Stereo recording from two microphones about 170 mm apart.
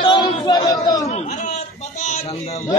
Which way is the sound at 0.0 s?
25° left (ahead or behind).